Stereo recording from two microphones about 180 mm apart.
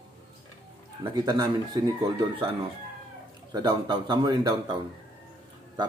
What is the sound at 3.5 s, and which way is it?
Speech, 25° right (ahead or behind).